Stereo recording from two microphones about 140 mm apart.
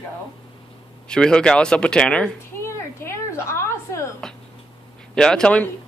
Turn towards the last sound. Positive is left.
turn(degrees=5)  # may be behind; listen again after turning